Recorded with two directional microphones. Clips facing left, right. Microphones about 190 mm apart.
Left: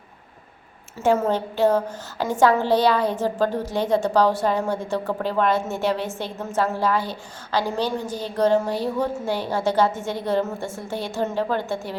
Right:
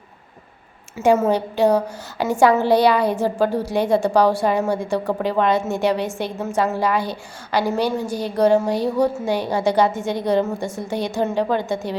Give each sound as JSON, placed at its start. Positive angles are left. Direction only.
{"t": 0.9, "sound": "a woman's voice", "side_deg": -10}